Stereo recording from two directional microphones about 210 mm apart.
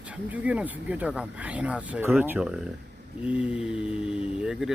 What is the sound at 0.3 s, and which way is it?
Speech, 5° right (ahead or behind).